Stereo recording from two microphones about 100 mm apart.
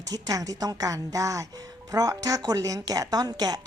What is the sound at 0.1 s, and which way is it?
Speech, 35° right (ahead or behind).